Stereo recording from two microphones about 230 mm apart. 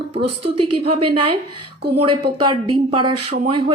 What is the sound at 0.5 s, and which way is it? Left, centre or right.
Speech, right.